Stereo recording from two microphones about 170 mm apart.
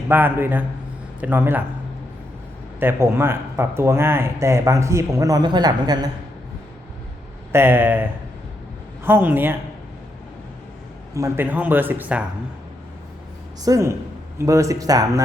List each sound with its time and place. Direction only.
0.1 s speech: 10° right (ahead or behind)
2.8 s speech: 15° right (ahead or behind)
7.5 s speech: 15° right (ahead or behind)
11.1 s speech: 15° right (ahead or behind)
13.7 s speech: 20° right (ahead or behind)